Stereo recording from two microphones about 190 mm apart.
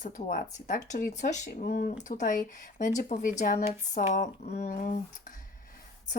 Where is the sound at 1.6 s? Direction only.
55° left (ahead or behind).